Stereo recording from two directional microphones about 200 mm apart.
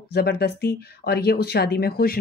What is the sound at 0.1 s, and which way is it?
Speech, 55° left (ahead or behind).